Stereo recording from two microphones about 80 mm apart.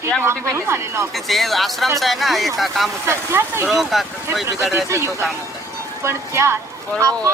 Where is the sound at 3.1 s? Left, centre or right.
Right.